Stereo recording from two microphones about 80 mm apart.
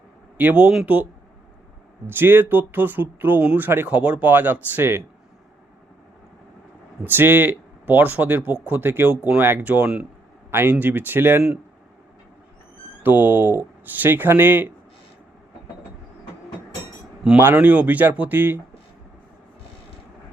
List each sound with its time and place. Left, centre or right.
0.3 s a man's voice: right
2.0 s a man's voice: right
3.8 s a man's voice: centre
7.0 s a man's voice: right
10.5 s a man's voice: right
13.0 s a man's voice: right
17.3 s a man's voice: right